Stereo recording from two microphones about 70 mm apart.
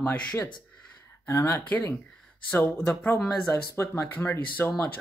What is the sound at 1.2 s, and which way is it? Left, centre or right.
Speech, left.